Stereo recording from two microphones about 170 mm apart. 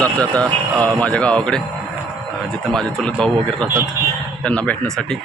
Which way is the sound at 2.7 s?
5° left (ahead or behind).